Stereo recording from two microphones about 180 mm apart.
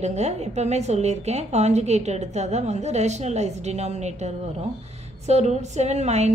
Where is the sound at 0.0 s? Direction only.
40° right (ahead or behind).